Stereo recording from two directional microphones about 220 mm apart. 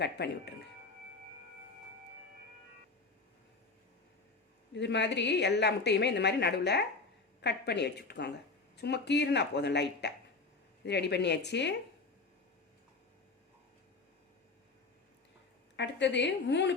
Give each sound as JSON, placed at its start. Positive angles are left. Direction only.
{"t": 0.0, "sound": "speech", "side_deg": 50}
{"t": 4.7, "sound": "speech", "side_deg": 50}
{"t": 15.7, "sound": "speech", "side_deg": 55}